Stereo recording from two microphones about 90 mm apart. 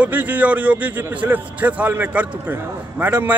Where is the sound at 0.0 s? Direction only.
20° right (ahead or behind).